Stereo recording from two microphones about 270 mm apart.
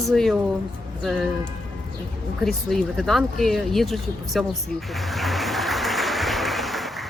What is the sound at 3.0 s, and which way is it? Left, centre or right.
Speech, centre.